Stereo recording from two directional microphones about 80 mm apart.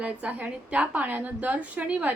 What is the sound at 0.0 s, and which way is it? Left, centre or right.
A woman's voice, centre.